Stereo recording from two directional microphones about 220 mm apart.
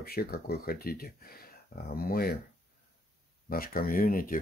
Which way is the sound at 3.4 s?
40° left (ahead or behind).